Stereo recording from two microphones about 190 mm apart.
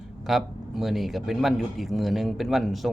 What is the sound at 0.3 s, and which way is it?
A man's voice, centre (ahead or behind).